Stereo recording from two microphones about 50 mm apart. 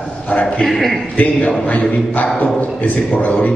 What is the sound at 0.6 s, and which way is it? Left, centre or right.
Speech, centre.